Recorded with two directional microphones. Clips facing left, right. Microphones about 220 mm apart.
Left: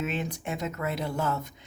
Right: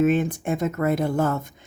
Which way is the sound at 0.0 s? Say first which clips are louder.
Right 11 dB; 50° right (ahead or behind).